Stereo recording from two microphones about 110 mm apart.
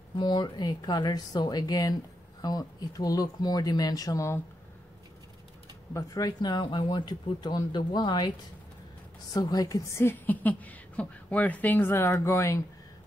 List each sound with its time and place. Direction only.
0.2 s speech: 40° left (ahead or behind)
5.9 s speech: 30° left (ahead or behind)
9.3 s a woman's voice: 35° left (ahead or behind)